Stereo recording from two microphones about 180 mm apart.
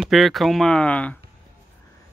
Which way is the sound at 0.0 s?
Centre (ahead or behind).